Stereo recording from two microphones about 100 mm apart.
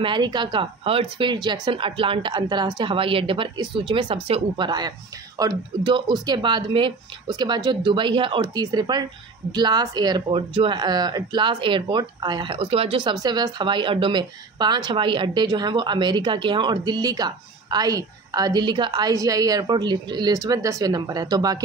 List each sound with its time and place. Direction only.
0.0 s speech: 50° right (ahead or behind)
4.6 s a woman's voice: 45° right (ahead or behind)
5.9 s a woman's voice: 55° right (ahead or behind)
10.3 s speech: 65° right (ahead or behind)
10.7 s a woman's voice: 45° right (ahead or behind); by 13.1 s 65° right (ahead or behind)
13.1 s a woman's voice: 40° right (ahead or behind)